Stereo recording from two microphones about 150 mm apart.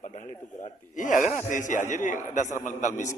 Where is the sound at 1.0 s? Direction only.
60° left (ahead or behind).